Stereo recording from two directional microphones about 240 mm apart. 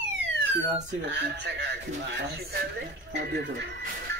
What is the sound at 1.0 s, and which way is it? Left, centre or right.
A man's voice, right.